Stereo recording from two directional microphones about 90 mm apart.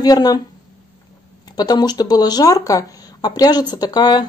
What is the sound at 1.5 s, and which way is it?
Speech, 50° left (ahead or behind).